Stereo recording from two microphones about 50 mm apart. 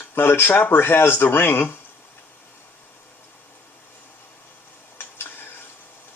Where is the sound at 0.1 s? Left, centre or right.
Left.